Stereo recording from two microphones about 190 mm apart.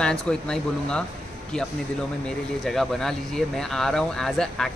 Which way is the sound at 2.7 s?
Centre (ahead or behind).